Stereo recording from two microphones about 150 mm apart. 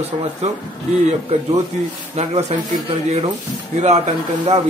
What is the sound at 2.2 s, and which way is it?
Speech, 45° right (ahead or behind).